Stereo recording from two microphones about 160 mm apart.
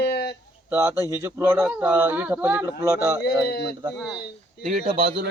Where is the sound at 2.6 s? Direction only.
20° right (ahead or behind).